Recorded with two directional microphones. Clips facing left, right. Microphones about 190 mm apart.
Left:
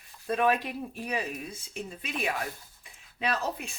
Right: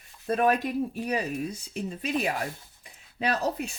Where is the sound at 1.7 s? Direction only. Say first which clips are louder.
Right 6 dB; 40° right (ahead or behind).